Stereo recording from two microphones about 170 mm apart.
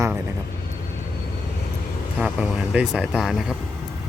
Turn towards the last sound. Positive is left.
turn(degrees=-5)  # may be behind; listen again after turning